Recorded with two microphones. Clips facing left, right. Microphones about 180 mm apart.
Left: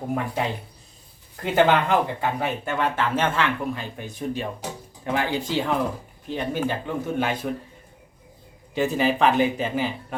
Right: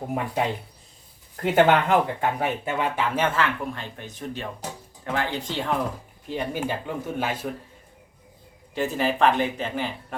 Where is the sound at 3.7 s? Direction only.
10° left (ahead or behind).